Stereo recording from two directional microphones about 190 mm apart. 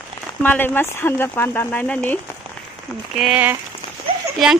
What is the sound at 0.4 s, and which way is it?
Speech, 10° left (ahead or behind).